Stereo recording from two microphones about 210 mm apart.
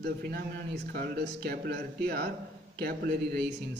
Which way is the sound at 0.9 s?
50° right (ahead or behind).